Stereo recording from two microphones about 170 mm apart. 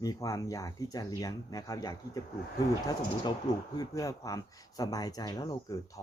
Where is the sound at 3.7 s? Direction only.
20° left (ahead or behind).